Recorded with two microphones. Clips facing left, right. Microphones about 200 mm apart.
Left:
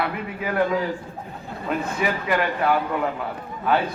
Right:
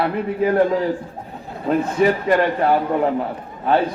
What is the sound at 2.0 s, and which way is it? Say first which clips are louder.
A man's voice: right 8 dB; 40° right (ahead or behind).